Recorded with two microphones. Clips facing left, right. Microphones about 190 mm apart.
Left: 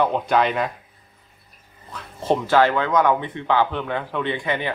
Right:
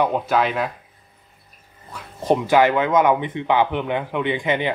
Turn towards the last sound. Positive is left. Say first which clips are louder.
# right 3 dB
turn(degrees=-20)  # may be behind; listen again after turning